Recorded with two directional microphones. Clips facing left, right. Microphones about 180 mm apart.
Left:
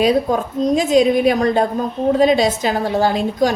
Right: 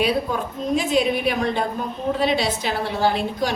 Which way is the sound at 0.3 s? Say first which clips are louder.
Left 7 dB; 45° left (ahead or behind).